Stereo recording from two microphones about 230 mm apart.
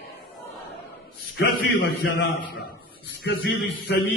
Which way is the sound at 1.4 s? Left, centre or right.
Left.